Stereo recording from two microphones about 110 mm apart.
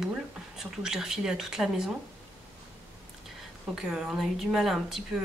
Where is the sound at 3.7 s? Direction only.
5° right (ahead or behind).